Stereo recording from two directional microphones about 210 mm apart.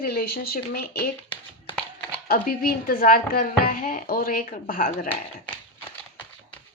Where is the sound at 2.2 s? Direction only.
45° left (ahead or behind).